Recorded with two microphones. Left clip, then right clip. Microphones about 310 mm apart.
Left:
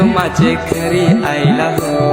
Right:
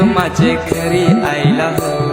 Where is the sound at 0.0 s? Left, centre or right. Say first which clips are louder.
Even; centre.